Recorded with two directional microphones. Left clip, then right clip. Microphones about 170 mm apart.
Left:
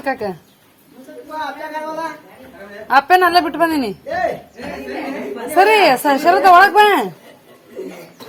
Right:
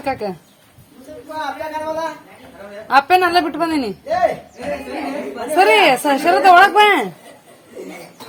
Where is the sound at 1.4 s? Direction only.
20° right (ahead or behind).